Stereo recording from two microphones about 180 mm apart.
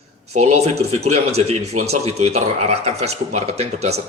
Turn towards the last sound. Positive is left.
turn(degrees=-35)  # may be behind; listen again after turning